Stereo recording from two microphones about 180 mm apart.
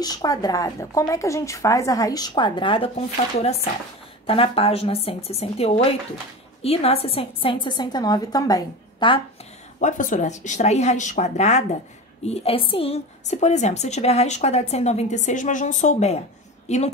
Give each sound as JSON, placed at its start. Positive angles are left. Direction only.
{"t": 0.0, "sound": "speech", "side_deg": 20}
{"t": 4.3, "sound": "a woman's voice", "side_deg": 30}
{"t": 9.8, "sound": "a woman's voice", "side_deg": 45}